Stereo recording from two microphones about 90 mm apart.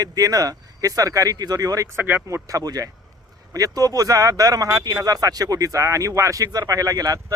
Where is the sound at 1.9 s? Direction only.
25° right (ahead or behind).